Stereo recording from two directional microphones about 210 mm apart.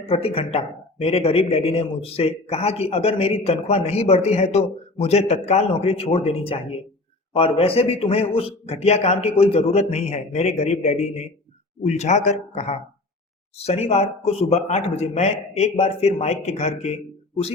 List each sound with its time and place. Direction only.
0.0 s a man's voice: 25° left (ahead or behind)